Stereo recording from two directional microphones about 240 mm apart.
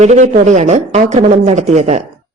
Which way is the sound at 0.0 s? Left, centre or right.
Right.